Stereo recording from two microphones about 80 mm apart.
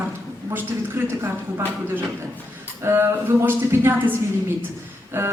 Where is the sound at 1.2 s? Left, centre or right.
Right.